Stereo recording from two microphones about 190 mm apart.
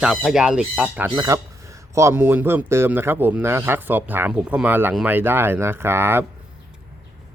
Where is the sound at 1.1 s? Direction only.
20° right (ahead or behind).